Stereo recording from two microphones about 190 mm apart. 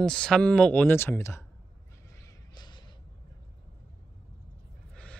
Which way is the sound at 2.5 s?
20° left (ahead or behind).